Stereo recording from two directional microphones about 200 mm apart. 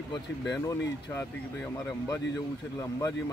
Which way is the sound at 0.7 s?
15° left (ahead or behind).